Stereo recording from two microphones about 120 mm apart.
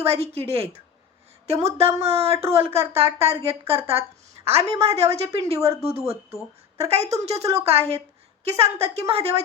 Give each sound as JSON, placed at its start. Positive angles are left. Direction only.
{"t": 0.0, "sound": "a woman's voice", "side_deg": -55}